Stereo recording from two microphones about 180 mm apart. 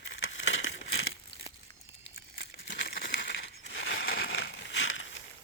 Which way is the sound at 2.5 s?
65° left (ahead or behind).